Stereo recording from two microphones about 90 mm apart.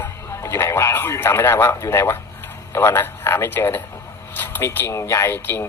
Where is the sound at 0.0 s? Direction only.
25° left (ahead or behind).